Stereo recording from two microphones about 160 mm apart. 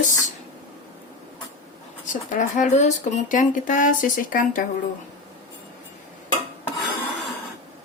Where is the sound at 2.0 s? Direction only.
50° left (ahead or behind).